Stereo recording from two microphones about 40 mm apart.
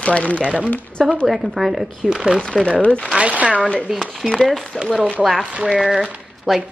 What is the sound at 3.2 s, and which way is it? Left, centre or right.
Speech, right.